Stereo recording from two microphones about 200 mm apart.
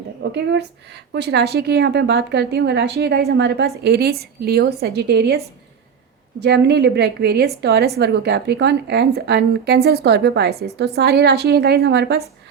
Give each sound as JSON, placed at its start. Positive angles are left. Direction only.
{"t": 0.2, "sound": "a woman's voice", "side_deg": -60}
{"t": 6.4, "sound": "a woman's voice", "side_deg": -55}